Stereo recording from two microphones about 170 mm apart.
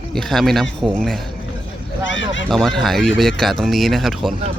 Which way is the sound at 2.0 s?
90° left.